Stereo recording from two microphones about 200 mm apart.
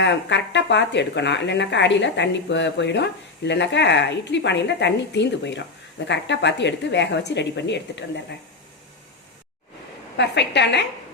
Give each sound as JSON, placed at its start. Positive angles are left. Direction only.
{"t": 0.0, "sound": "speech", "side_deg": 60}
{"t": 10.2, "sound": "speech", "side_deg": 60}